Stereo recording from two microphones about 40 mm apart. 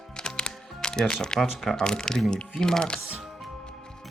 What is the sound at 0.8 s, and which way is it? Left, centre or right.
Speech, centre.